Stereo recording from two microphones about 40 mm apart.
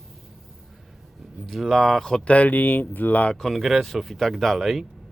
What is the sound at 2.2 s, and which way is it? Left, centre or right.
Speech, left.